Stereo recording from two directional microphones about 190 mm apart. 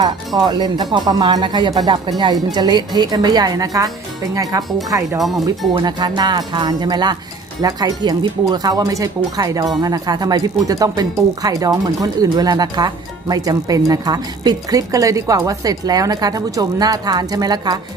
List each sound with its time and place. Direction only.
0.3 s speech: 20° right (ahead or behind)
5.2 s speech: centre (ahead or behind)
5.5 s speech: 20° right (ahead or behind)